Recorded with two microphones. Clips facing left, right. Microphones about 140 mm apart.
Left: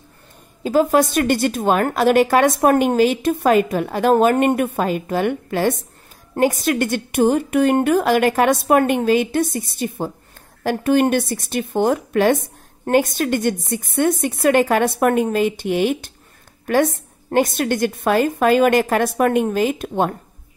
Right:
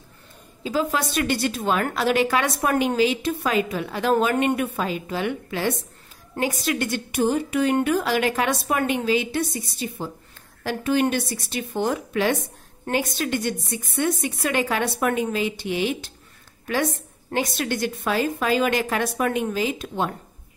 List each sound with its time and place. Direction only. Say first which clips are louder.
0.7 s a woman's voice: left 9 dB; 50° left (ahead or behind)